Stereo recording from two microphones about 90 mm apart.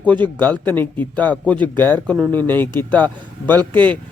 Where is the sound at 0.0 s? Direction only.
15° left (ahead or behind).